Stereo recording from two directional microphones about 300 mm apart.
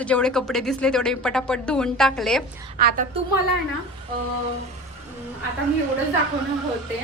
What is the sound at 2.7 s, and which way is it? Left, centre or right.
Speech, right.